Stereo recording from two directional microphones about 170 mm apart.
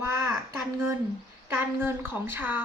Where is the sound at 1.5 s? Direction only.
15° right (ahead or behind).